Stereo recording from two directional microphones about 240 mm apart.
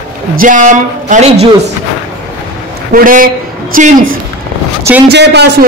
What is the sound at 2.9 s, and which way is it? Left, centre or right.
Speech, right.